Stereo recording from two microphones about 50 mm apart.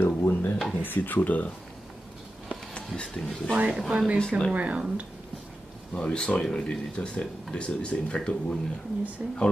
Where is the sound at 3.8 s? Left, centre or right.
Centre.